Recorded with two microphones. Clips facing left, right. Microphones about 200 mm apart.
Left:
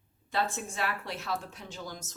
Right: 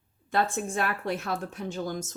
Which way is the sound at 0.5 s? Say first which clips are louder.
Right 5 dB; 55° right (ahead or behind).